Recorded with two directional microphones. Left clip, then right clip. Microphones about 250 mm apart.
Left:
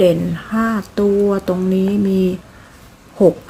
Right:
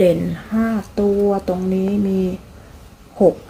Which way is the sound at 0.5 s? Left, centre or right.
Centre.